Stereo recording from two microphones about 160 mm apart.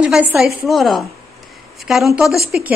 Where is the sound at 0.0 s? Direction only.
10° right (ahead or behind).